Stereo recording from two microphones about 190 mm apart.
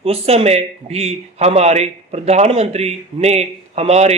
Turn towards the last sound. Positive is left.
turn(degrees=-35)  # may be behind; listen again after turning